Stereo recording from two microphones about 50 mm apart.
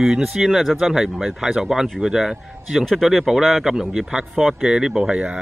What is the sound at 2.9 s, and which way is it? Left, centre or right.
Speech, centre.